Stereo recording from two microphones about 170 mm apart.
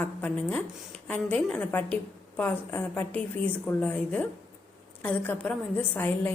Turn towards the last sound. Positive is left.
turn(degrees=10)  # may be behind; listen again after turning